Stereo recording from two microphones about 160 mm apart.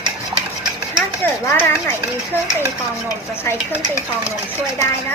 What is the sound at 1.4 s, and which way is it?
Speech, 15° left (ahead or behind).